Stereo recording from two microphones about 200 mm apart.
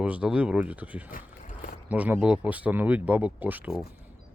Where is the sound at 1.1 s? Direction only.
40° left (ahead or behind).